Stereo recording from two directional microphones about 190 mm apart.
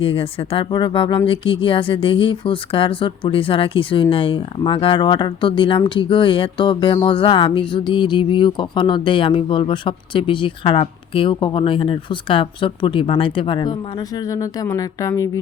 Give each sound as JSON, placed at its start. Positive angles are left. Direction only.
{"t": 0.0, "sound": "speech", "side_deg": 30}